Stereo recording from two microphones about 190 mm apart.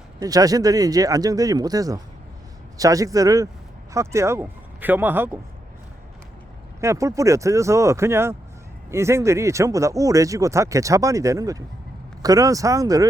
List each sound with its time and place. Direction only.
0.2 s speech: 20° right (ahead or behind)
6.8 s speech: 15° right (ahead or behind)